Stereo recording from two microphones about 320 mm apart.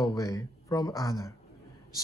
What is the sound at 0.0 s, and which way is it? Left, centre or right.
Speech, centre.